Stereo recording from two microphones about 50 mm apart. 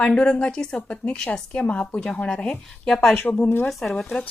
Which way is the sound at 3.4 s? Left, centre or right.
Left.